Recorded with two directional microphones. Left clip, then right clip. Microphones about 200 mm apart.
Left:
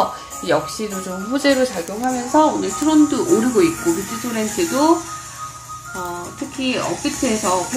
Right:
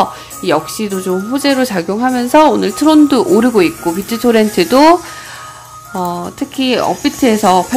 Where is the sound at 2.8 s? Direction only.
55° right (ahead or behind).